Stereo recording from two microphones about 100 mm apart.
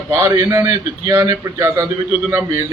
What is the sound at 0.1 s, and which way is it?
A man's voice, 25° right (ahead or behind).